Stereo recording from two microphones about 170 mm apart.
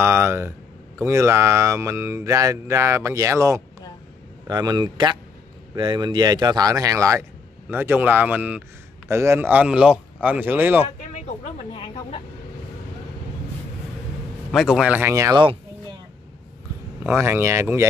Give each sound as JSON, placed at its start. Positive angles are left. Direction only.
{"t": 0.0, "sound": "a man's voice", "side_deg": -15}
{"t": 11.2, "sound": "speech", "side_deg": 35}
{"t": 14.5, "sound": "a man's voice", "side_deg": 0}
{"t": 17.0, "sound": "a man's voice", "side_deg": -15}